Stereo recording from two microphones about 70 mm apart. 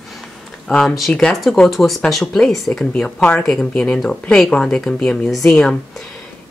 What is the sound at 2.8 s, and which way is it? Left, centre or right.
A woman's voice, centre.